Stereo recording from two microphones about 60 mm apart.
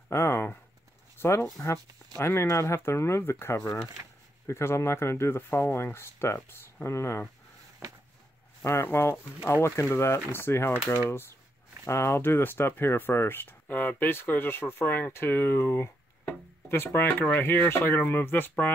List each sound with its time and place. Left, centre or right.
0.1 s a sound: left
1.2 s speech: left
8.8 s speech: left
11.8 s speech: left